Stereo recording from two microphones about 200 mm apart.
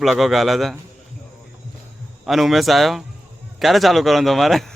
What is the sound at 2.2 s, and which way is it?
Speech, centre (ahead or behind).